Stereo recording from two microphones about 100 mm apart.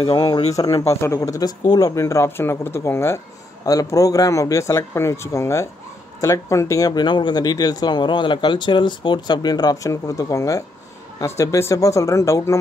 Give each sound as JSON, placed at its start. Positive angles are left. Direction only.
{"t": 0.0, "sound": "speech", "side_deg": 80}
{"t": 0.6, "sound": "speech", "side_deg": 35}